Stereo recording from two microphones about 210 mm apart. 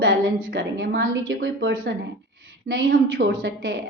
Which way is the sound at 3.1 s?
65° right (ahead or behind).